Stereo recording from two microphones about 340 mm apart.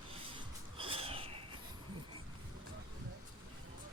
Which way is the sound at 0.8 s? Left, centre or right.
Centre.